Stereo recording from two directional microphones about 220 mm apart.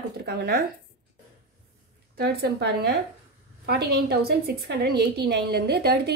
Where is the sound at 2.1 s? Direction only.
45° right (ahead or behind).